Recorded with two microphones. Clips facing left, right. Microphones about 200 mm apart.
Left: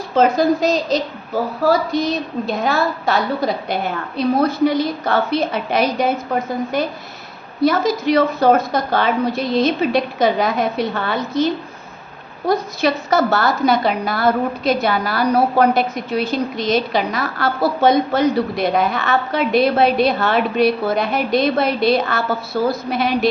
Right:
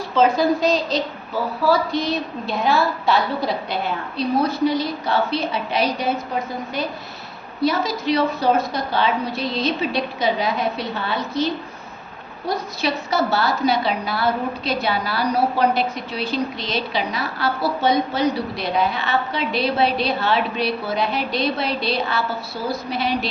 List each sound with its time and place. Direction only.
0.1 s a woman's voice: 45° left (ahead or behind)
12.5 s a woman's voice: 50° left (ahead or behind)